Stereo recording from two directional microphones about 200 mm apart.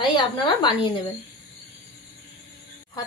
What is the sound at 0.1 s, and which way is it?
Speech, 25° left (ahead or behind).